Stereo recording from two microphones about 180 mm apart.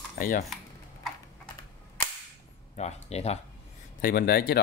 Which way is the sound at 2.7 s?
35° left (ahead or behind).